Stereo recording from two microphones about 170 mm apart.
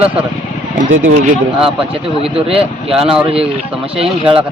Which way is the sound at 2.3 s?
35° right (ahead or behind).